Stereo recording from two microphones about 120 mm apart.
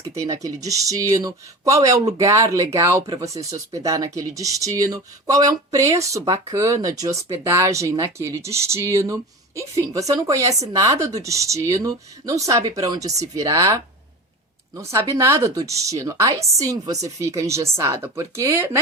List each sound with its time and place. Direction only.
0.2 s speech: 30° right (ahead or behind)